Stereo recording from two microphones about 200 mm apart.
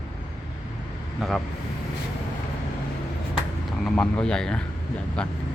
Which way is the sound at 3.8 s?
5° left (ahead or behind).